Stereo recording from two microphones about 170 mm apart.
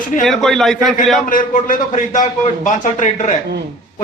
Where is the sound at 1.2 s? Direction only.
50° left (ahead or behind).